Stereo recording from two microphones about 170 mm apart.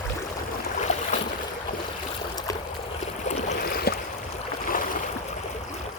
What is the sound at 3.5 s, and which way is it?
Boat, 65° left (ahead or behind).